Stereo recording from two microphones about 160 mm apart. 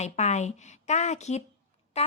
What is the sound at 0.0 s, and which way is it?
A woman's voice, 45° left (ahead or behind).